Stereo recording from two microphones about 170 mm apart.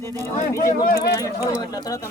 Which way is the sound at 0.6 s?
55° left (ahead or behind).